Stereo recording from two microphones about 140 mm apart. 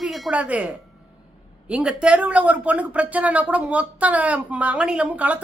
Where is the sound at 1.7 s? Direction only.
5° right (ahead or behind).